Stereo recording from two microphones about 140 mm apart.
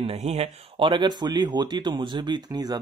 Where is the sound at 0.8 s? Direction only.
35° right (ahead or behind).